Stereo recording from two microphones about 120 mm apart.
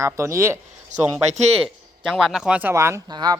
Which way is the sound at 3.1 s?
35° right (ahead or behind).